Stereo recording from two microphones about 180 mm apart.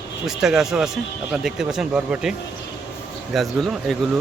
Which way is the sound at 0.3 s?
5° right (ahead or behind).